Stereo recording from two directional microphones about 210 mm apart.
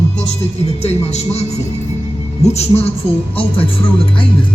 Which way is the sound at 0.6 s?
30° left (ahead or behind).